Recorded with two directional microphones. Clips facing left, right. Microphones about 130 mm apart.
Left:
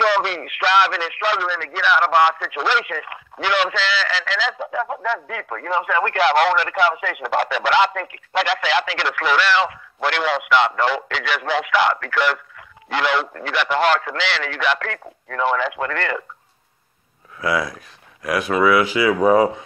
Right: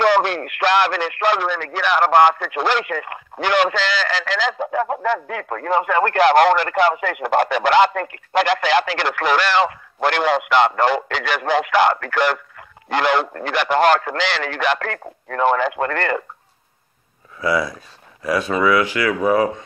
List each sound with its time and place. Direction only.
0.0 s speech: 45° right (ahead or behind)
17.4 s speech: centre (ahead or behind)
19.2 s speech: 25° left (ahead or behind)